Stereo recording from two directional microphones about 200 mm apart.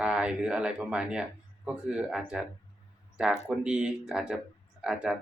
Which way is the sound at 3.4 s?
5° right (ahead or behind).